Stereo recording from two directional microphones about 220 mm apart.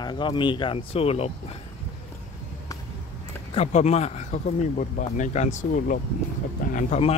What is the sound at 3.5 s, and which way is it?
Speech, 30° left (ahead or behind).